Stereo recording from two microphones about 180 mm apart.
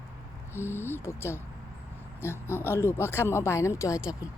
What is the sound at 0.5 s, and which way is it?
Speech, 15° left (ahead or behind).